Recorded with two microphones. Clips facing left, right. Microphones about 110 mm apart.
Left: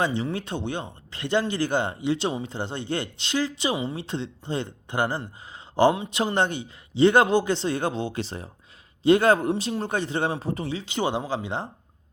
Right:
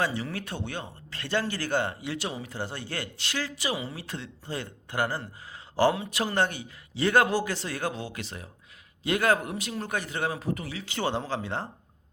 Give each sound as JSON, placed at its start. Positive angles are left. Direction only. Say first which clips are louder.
{"t": 0.0, "sound": "speech", "louder": "left 4 dB", "side_deg": 20}